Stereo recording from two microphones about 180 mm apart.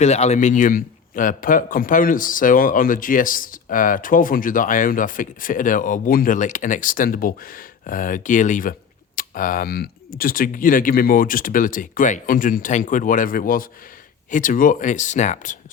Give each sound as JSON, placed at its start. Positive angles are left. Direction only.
{"t": 0.0, "sound": "a man's voice", "side_deg": 40}